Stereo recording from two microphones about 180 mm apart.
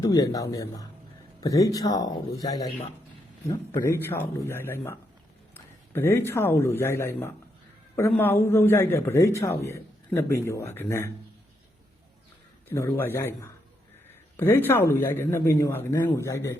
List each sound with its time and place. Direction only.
0.0 s a man's voice: 20° left (ahead or behind)
12.6 s a man's voice: 15° left (ahead or behind)